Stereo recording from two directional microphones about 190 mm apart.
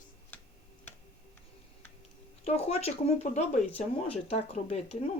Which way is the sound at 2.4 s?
30° left (ahead or behind).